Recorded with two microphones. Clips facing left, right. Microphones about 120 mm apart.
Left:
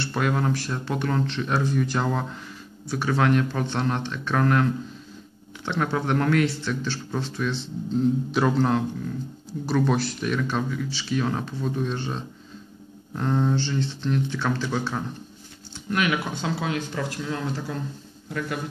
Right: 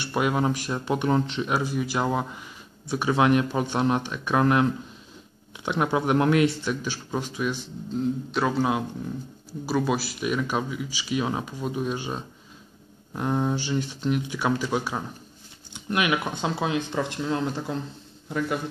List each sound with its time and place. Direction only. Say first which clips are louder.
0.0 s speech: right 1 dB; 15° right (ahead or behind)
5.7 s speech: right 2 dB; 15° right (ahead or behind)
8.0 s a man's voice: left 3 dB; centre (ahead or behind); by 17.7 s 20° right (ahead or behind)